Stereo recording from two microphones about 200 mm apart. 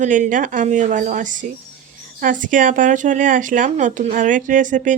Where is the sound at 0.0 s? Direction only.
40° right (ahead or behind).